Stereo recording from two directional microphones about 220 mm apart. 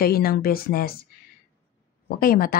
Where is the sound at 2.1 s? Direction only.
40° left (ahead or behind).